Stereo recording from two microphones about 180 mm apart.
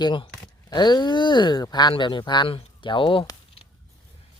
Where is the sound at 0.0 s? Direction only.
25° left (ahead or behind).